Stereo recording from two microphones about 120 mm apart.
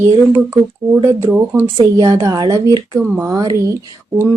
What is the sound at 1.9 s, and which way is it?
Speech, 30° right (ahead or behind).